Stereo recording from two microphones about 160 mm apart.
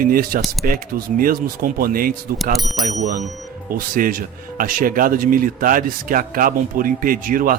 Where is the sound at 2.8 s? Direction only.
50° right (ahead or behind).